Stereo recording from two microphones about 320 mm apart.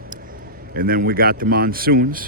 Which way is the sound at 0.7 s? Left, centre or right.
Right.